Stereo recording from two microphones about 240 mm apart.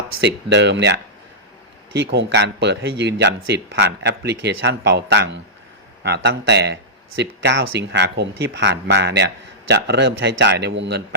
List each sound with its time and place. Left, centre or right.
0.2 s speech: right